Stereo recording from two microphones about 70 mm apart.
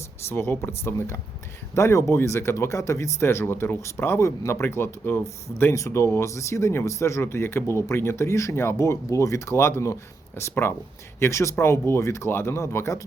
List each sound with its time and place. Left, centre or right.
0.3 s speech: left